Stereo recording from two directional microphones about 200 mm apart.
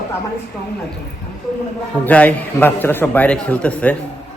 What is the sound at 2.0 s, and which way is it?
A man's voice, 10° left (ahead or behind).